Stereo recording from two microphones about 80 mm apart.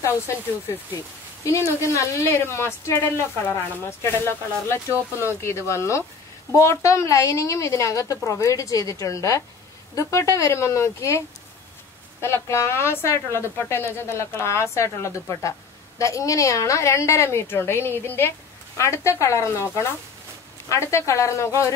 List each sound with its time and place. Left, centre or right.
1.4 s a woman's voice: left